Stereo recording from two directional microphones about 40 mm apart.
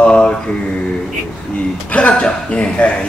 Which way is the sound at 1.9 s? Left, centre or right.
Left.